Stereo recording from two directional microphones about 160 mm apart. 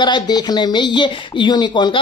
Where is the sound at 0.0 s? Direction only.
25° left (ahead or behind).